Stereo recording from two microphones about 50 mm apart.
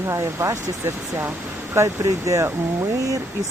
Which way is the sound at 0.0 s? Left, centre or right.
Right.